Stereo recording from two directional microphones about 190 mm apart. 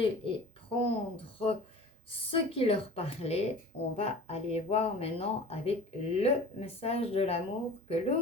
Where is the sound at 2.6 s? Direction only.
30° left (ahead or behind).